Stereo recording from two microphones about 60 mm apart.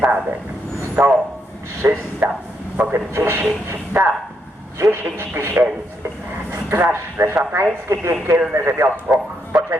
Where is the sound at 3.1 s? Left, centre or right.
Right.